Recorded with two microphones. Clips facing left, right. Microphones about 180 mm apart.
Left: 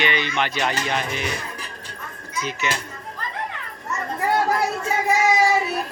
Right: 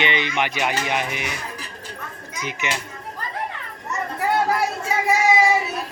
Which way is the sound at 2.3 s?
15° right (ahead or behind).